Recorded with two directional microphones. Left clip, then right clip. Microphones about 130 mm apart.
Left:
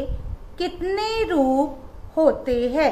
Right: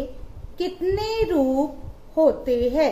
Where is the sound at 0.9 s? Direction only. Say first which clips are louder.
Left 2 dB; 40° right (ahead or behind).